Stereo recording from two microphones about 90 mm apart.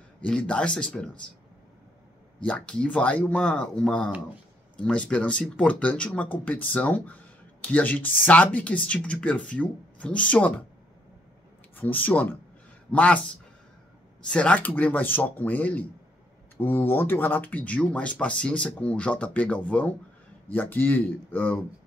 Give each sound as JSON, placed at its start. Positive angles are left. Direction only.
{"t": 0.2, "sound": "speech", "side_deg": 15}
{"t": 2.4, "sound": "speech", "side_deg": 10}
{"t": 11.7, "sound": "speech", "side_deg": 20}
{"t": 14.2, "sound": "speech", "side_deg": 15}